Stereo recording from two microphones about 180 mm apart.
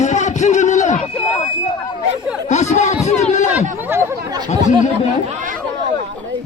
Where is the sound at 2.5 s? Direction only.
40° left (ahead or behind).